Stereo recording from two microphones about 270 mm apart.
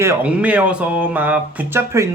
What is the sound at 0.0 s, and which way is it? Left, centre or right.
Speech, centre.